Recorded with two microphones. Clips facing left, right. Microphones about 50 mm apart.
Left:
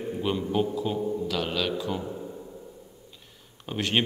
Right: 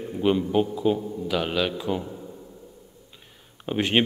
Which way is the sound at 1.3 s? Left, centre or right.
Centre.